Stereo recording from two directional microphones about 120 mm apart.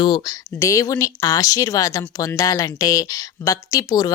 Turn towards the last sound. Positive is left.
turn(degrees=30)  # may be behind; listen again after turning